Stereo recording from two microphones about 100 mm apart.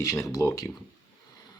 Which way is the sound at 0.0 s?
35° left (ahead or behind).